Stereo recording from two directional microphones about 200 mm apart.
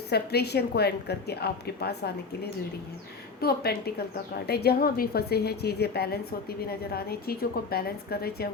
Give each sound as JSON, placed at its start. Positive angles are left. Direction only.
{"t": 0.1, "sound": "a woman's voice", "side_deg": 55}